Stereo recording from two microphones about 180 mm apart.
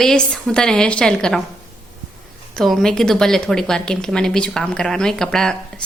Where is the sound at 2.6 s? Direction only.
Centre (ahead or behind).